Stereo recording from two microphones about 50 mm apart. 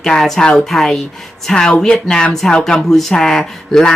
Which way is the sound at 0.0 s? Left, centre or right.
Centre.